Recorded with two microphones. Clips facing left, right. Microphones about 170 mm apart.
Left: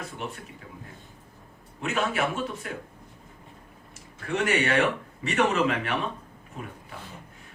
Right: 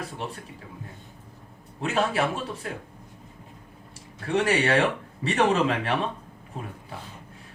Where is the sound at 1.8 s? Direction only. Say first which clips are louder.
Right 2 dB; 35° right (ahead or behind).